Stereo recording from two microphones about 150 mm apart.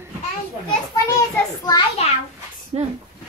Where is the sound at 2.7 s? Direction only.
45° right (ahead or behind).